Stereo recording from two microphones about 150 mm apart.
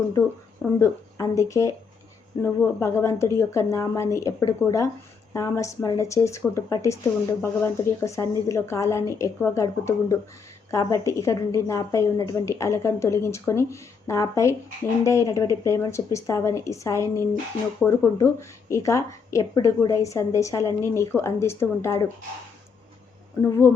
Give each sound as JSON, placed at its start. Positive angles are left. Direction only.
{"t": 0.8, "sound": "speech", "side_deg": 20}
{"t": 23.4, "sound": "speech", "side_deg": 15}